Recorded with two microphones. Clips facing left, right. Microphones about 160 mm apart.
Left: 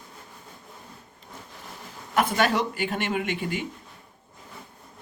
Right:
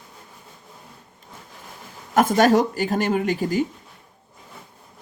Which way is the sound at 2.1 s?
40° right (ahead or behind).